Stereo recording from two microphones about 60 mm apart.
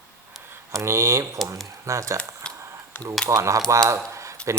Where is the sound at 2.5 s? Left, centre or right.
Centre.